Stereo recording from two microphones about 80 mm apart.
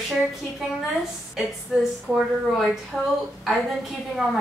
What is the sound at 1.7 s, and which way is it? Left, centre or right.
Speech, centre.